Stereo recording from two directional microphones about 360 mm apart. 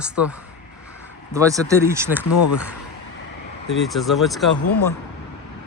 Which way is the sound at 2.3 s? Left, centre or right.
Left.